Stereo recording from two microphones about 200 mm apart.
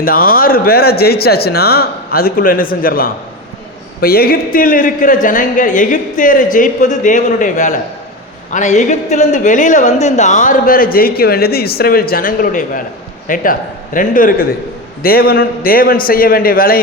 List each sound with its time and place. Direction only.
0.0 s speech: 45° left (ahead or behind)